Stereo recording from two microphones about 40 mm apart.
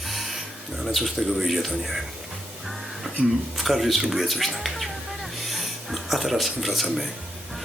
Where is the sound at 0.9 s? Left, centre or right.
Centre.